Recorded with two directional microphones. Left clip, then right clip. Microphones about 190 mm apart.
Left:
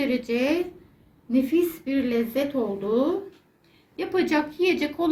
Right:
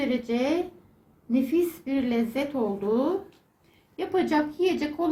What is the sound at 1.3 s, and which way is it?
Speech, 30° right (ahead or behind).